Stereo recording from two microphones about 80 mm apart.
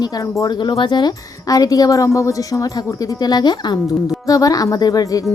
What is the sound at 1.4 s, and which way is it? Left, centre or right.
Speech, left.